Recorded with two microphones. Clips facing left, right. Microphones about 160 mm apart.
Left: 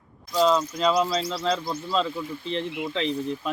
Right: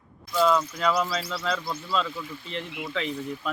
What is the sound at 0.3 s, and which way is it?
Speech, 25° left (ahead or behind).